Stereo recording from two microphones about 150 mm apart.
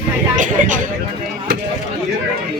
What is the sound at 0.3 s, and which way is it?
Speech, 60° right (ahead or behind).